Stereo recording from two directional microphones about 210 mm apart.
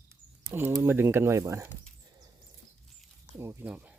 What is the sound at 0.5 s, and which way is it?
Speech, 10° right (ahead or behind).